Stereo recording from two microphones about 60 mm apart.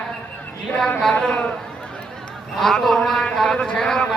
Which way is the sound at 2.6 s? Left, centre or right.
Centre.